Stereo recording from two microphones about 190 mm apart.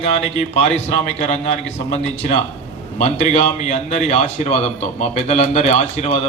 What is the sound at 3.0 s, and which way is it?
A man's voice, 35° left (ahead or behind).